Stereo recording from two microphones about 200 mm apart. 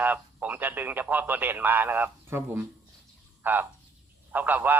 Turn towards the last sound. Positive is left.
turn(degrees=-10)  # may be behind; listen again after turning